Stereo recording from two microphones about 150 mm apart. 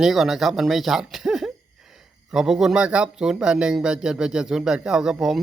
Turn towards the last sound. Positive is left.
turn(degrees=0)  # may be behind; listen again after turning